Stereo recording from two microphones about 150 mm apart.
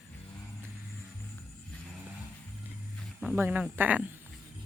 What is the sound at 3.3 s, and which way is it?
Speech, 10° right (ahead or behind).